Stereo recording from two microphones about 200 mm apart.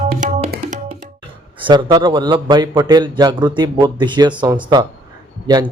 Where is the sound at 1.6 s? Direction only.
25° right (ahead or behind).